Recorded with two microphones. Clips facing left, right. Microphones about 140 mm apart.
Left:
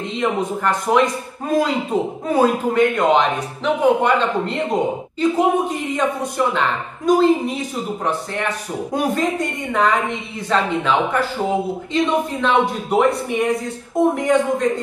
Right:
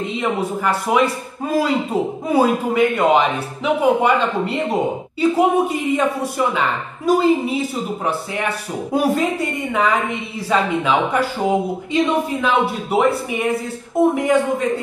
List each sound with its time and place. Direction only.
0.1 s speech: 5° right (ahead or behind)